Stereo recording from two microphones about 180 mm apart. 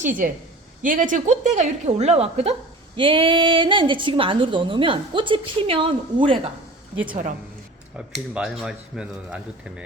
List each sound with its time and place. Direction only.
0.0 s a woman's voice: 45° right (ahead or behind); by 6.5 s 30° right (ahead or behind)
8.3 s speech: 5° right (ahead or behind)